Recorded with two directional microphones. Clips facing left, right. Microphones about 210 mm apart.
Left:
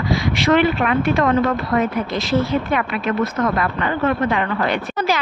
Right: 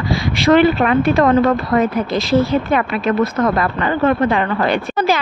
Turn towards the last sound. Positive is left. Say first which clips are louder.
# right 4 dB
turn(degrees=-30)  # may be behind; listen again after turning